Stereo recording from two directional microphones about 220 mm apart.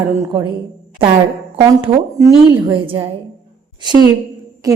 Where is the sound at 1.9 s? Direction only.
20° right (ahead or behind).